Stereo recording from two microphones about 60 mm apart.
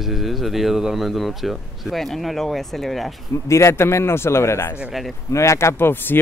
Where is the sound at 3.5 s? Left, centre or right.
Left.